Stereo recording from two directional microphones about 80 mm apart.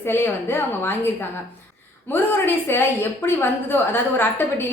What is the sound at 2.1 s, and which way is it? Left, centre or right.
A woman's voice, left.